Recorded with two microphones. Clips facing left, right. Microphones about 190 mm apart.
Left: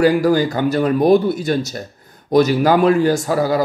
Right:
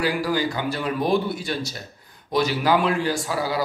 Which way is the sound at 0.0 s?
45° left (ahead or behind).